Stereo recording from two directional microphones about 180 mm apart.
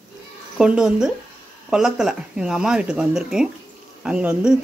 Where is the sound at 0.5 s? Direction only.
5° right (ahead or behind).